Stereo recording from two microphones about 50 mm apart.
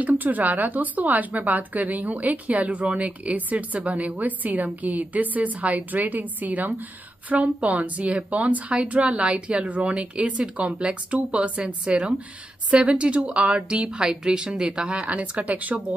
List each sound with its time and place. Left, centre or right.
0.0 s a woman's voice: right